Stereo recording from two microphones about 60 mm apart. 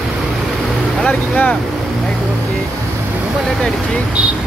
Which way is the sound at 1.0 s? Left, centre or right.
Left.